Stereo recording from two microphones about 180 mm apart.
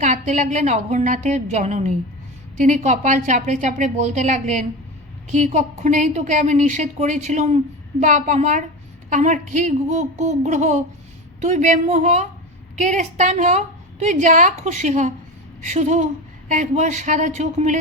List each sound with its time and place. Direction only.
0.0 s a woman's voice: 45° right (ahead or behind)